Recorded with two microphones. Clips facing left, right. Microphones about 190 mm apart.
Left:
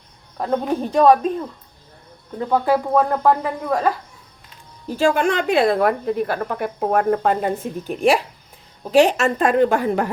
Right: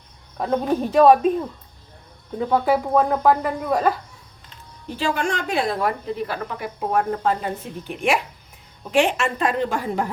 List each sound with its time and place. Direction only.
0.3 s speech: 5° right (ahead or behind)
4.9 s a woman's voice: 45° left (ahead or behind)
8.8 s a woman's voice: 35° left (ahead or behind); by 10.1 s 60° left (ahead or behind)